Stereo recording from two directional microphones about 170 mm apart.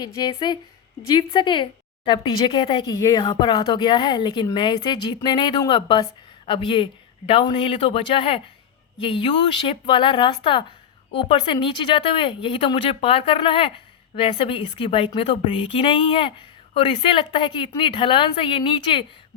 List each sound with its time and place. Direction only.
0.0 s speech: 25° left (ahead or behind)